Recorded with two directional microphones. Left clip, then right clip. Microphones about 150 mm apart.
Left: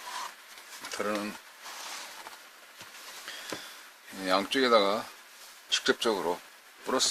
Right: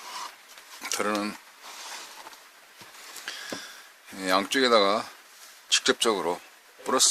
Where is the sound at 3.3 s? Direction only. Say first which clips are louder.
Right 6 dB; 45° right (ahead or behind).